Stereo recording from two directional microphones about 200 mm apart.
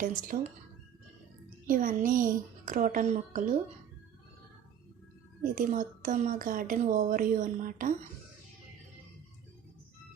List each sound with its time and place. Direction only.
0.3 s speech: 35° right (ahead or behind)
1.6 s a woman's voice: 45° right (ahead or behind)
5.4 s a woman's voice: 40° right (ahead or behind)